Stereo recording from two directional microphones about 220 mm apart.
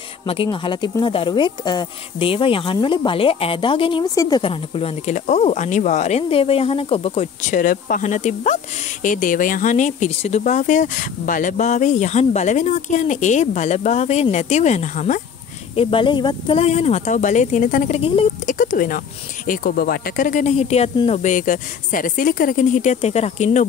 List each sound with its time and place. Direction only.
0.3 s speech: 25° left (ahead or behind)
15.7 s speech: 25° left (ahead or behind)
18.6 s speech: 35° left (ahead or behind)